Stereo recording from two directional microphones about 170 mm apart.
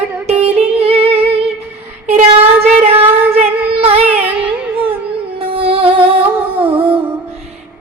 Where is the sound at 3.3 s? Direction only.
35° right (ahead or behind).